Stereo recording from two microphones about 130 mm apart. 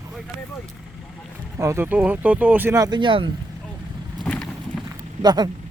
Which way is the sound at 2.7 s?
30° right (ahead or behind).